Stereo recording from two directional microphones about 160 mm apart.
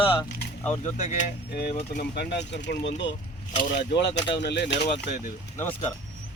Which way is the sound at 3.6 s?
75° left (ahead or behind).